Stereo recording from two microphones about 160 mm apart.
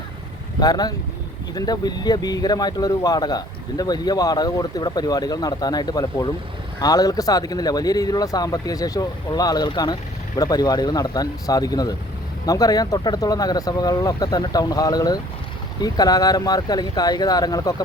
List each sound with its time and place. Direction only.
0.6 s speech: 25° left (ahead or behind)